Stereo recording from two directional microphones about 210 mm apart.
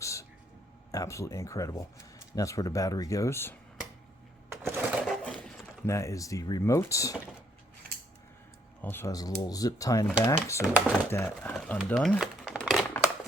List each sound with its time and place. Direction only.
0.0 s a sound: 15° left (ahead or behind)
0.9 s speech: 15° left (ahead or behind)
4.6 s sewing machine: 10° right (ahead or behind)
5.0 s a sound: 5° left (ahead or behind)
5.9 s speech: 15° left (ahead or behind)
8.8 s speech: 10° left (ahead or behind)
11.9 s typing: 5° left (ahead or behind)